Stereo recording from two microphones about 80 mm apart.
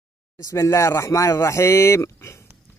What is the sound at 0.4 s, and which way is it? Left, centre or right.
A man's voice, left.